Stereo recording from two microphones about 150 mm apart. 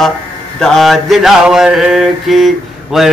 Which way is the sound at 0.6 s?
Centre (ahead or behind).